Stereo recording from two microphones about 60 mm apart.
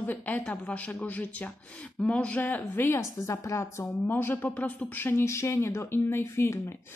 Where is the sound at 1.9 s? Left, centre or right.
Centre.